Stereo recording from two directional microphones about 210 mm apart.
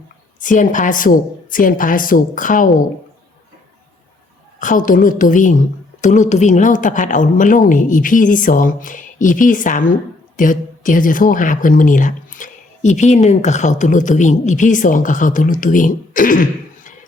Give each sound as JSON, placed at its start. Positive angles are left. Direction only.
{"t": 0.3, "sound": "a woman's voice", "side_deg": 40}
{"t": 4.6, "sound": "a woman's voice", "side_deg": 40}